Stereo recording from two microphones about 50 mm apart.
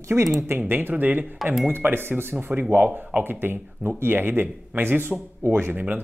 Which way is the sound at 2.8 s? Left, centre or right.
Right.